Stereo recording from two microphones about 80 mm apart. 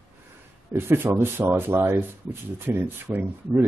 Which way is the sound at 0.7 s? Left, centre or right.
Right.